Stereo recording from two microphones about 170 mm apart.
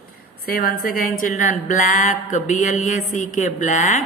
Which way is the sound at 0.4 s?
65° left (ahead or behind).